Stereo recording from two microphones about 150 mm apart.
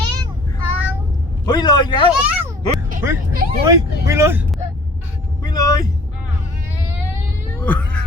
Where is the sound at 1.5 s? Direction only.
30° left (ahead or behind).